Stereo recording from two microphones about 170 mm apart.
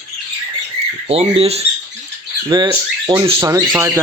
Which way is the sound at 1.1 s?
35° right (ahead or behind).